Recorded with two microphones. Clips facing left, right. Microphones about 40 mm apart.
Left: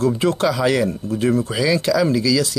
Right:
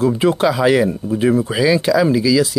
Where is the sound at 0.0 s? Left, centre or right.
Centre.